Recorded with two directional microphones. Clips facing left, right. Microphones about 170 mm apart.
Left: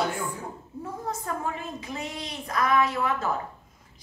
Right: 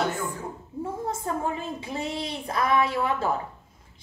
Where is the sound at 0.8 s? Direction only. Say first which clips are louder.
Right 3 dB; 25° right (ahead or behind).